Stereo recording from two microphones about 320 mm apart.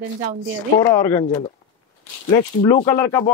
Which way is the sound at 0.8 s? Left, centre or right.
Centre.